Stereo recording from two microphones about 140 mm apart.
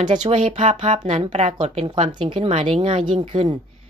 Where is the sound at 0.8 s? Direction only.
55° right (ahead or behind).